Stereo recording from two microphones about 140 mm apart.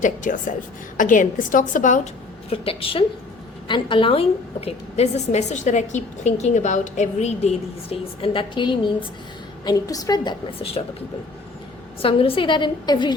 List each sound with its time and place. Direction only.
0.0 s a woman's voice: 70° left (ahead or behind)
2.5 s a woman's voice: 40° left (ahead or behind)
10.8 s a woman's voice: 45° left (ahead or behind)
12.0 s a woman's voice: 40° left (ahead or behind)